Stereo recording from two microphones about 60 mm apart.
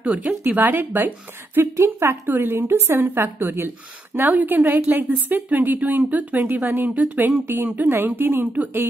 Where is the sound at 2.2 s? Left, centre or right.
Right.